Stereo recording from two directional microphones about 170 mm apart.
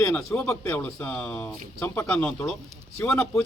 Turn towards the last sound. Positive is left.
turn(degrees=5)  # may be behind; listen again after turning